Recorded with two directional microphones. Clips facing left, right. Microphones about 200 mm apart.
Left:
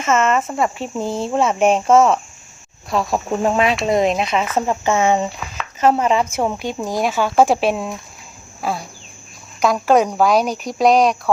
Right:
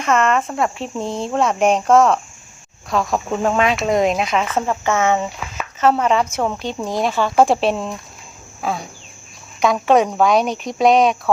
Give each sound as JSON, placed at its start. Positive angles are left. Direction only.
{"t": 0.0, "sound": "speech", "side_deg": 0}
{"t": 4.6, "sound": "speech", "side_deg": 20}